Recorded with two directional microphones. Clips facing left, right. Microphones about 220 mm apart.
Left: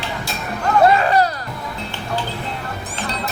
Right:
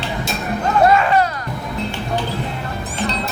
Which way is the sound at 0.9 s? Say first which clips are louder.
Right 1 dB; 35° left (ahead or behind).